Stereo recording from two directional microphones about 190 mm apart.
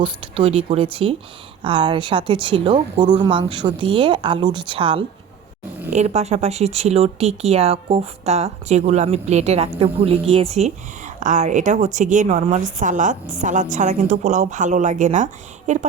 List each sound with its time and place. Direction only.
0.0 s speech: 30° right (ahead or behind)